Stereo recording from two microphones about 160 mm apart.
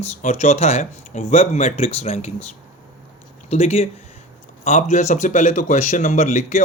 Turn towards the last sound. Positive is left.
turn(degrees=50)  # may be behind; listen again after turning